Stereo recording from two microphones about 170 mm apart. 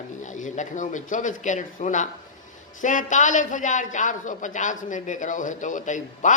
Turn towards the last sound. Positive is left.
turn(degrees=50)  # may be behind; listen again after turning